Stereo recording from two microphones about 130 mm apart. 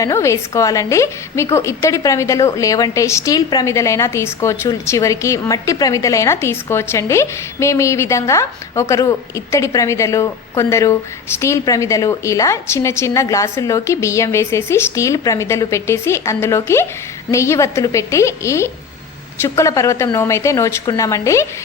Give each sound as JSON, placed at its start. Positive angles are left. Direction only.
{"t": 0.0, "sound": "a woman's voice", "side_deg": 20}